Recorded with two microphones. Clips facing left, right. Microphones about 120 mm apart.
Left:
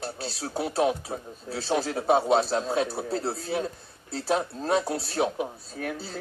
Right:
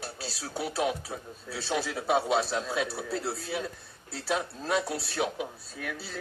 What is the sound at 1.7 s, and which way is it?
A woman's voice, 45° left (ahead or behind).